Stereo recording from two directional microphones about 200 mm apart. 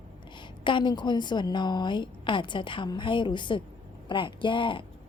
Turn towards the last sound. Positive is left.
turn(degrees=25)  # may be behind; listen again after turning